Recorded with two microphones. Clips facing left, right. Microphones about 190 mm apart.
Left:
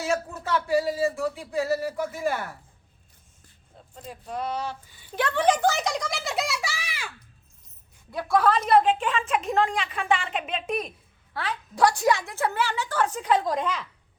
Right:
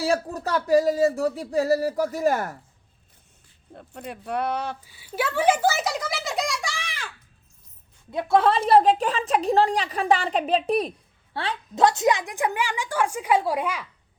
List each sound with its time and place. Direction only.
0.0 s a woman's voice: 35° right (ahead or behind)
3.8 s speech: 65° right (ahead or behind)
4.9 s a child's voice: 5° right (ahead or behind)
8.1 s a woman's voice: 25° right (ahead or behind)